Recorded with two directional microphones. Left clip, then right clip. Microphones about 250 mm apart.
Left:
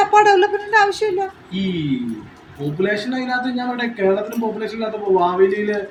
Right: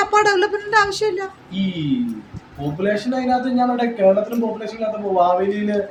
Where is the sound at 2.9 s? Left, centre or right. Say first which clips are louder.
Right 2 dB; right.